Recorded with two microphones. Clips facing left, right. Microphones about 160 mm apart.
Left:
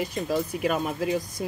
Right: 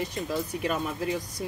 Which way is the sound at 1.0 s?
25° left (ahead or behind).